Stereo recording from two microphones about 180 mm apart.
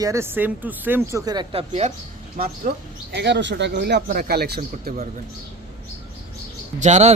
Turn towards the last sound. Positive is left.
turn(degrees=-40)  # may be behind; listen again after turning